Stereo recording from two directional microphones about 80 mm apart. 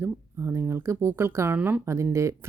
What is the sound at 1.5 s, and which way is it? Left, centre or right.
Speech, right.